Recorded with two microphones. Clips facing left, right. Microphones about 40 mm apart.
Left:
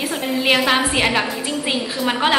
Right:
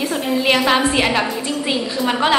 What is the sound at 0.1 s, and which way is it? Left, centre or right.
A woman's voice, centre.